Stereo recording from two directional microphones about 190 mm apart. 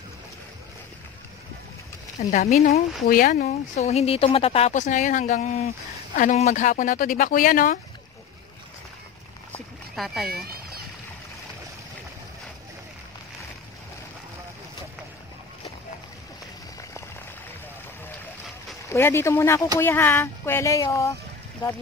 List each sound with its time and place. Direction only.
2.3 s speech: 40° left (ahead or behind)
3.1 s speech: 50° left (ahead or behind)
3.8 s speech: 35° left (ahead or behind)
9.5 s boat: centre (ahead or behind)
18.9 s speech: 15° left (ahead or behind)